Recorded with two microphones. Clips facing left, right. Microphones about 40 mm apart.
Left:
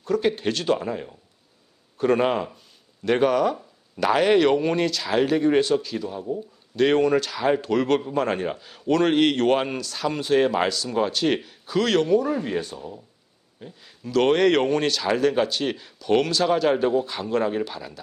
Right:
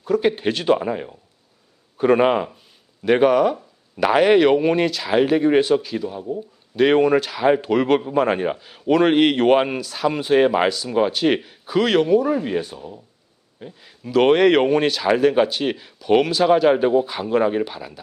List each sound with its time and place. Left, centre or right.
0.0 s speech: centre